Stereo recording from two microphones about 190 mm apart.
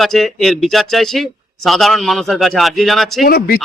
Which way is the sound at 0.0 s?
Centre (ahead or behind).